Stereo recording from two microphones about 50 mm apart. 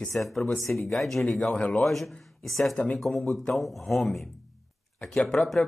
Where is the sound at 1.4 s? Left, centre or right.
Left.